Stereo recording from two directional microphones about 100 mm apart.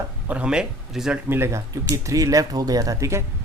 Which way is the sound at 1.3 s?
25° right (ahead or behind).